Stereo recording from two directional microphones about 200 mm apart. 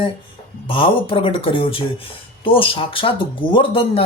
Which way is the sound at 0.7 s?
25° left (ahead or behind).